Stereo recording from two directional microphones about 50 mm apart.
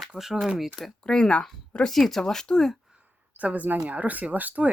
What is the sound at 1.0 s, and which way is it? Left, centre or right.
Speech, centre.